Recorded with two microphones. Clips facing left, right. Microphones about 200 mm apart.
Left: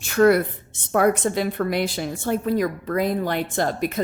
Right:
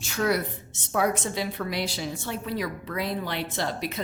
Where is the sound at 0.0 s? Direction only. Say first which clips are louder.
Left 9 dB; 55° left (ahead or behind).